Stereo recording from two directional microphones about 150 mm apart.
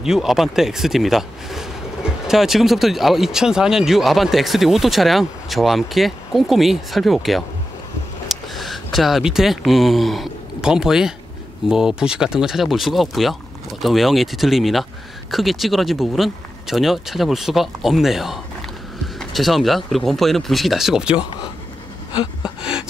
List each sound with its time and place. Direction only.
0.0 s speech: centre (ahead or behind)
22.4 s speech: 5° right (ahead or behind)